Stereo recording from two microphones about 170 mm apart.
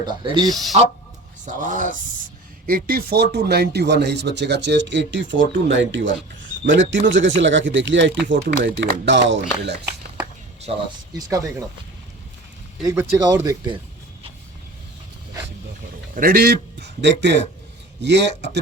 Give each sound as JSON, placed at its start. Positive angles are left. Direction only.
{"t": 0.0, "sound": "speech", "side_deg": -25}
{"t": 1.5, "sound": "speech", "side_deg": -50}
{"t": 10.7, "sound": "speech", "side_deg": -40}
{"t": 11.1, "sound": "speech", "side_deg": -20}
{"t": 12.8, "sound": "speech", "side_deg": -20}
{"t": 16.1, "sound": "speech", "side_deg": -60}